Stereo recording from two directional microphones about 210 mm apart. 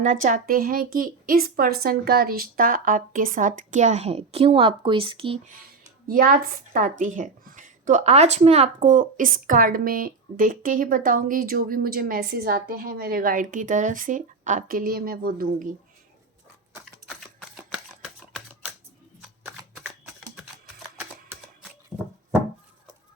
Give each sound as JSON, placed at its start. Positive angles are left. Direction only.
{"t": 0.0, "sound": "a woman's voice", "side_deg": -40}
{"t": 6.1, "sound": "a woman's voice", "side_deg": -40}
{"t": 17.6, "sound": "a sound", "side_deg": -5}
{"t": 19.4, "sound": "shuffling cards", "side_deg": -5}
{"t": 21.0, "sound": "typewriter", "side_deg": -5}